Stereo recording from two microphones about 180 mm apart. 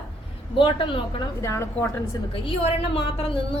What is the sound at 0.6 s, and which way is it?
Speech, 25° left (ahead or behind).